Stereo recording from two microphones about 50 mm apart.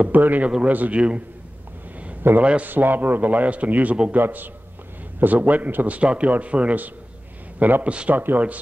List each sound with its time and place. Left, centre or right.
0.0 s a man's voice: right
2.4 s speech: right
2.7 s a man's voice: right